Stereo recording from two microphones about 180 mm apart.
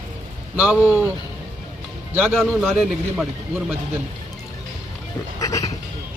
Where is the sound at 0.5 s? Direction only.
10° right (ahead or behind).